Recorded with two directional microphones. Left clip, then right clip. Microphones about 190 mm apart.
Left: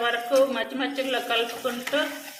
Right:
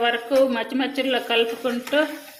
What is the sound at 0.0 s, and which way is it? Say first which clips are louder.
Speech: right 2 dB; 40° right (ahead or behind).